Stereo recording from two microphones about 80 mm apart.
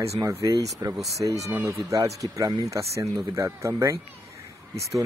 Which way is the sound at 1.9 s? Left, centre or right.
Right.